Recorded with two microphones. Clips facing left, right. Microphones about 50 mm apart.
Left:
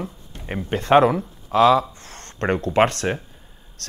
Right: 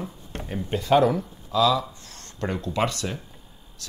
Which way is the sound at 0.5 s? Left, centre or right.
Left.